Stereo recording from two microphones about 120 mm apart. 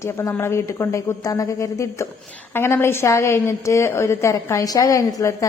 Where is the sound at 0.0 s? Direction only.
25° left (ahead or behind).